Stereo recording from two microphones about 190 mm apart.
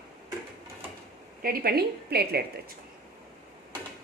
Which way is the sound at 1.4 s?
50° right (ahead or behind).